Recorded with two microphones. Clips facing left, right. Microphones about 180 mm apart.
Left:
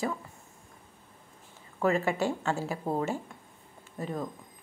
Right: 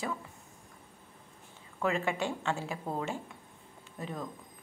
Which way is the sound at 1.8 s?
40° left (ahead or behind).